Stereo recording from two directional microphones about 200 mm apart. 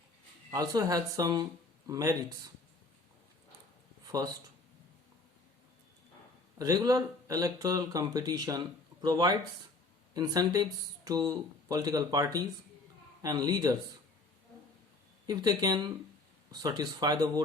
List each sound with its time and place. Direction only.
0.5 s speech: 20° right (ahead or behind)
4.0 s a sound: 15° right (ahead or behind)
6.6 s speech: 20° right (ahead or behind)
15.3 s speech: 20° right (ahead or behind)